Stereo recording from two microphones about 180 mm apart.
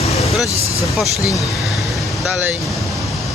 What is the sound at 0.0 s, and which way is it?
Vehicle, 35° left (ahead or behind).